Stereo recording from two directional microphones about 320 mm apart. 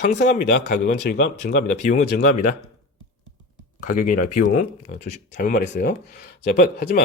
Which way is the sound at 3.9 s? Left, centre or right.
Left.